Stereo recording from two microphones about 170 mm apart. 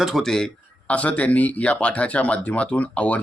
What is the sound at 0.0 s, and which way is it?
Speech, centre (ahead or behind).